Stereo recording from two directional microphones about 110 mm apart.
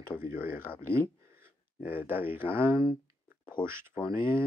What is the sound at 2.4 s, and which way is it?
Speech, 50° left (ahead or behind).